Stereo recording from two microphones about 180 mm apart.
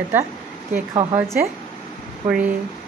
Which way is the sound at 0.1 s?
10° right (ahead or behind).